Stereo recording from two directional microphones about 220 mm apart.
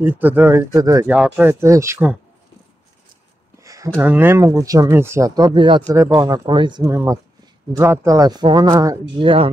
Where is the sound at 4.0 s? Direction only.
10° right (ahead or behind).